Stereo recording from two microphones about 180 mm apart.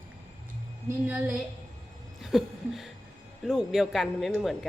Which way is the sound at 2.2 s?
Centre (ahead or behind).